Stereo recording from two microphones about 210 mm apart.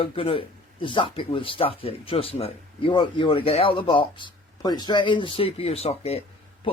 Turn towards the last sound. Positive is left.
turn(degrees=30)  # may be behind; listen again after turning